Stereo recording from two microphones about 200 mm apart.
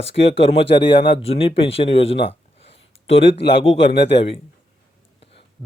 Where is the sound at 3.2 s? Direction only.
60° left (ahead or behind).